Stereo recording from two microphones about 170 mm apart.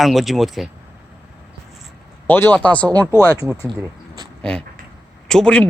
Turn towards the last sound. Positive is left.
turn(degrees=5)  # may be behind; listen again after turning